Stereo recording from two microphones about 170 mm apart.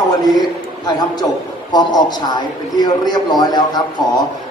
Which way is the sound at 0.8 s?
25° left (ahead or behind).